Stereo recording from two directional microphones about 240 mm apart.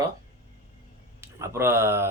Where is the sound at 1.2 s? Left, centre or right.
Centre.